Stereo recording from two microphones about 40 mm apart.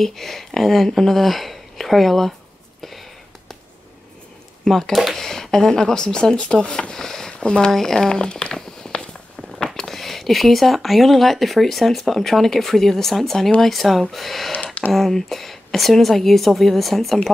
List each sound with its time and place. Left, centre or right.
0.0 s speech: centre
2.8 s a sound: centre
4.6 s speech: centre
7.7 s speech: centre
8.2 s speech: left
8.5 s walk: centre
9.8 s speech: centre